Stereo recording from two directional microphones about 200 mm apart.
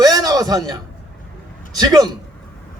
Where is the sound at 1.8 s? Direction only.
20° right (ahead or behind).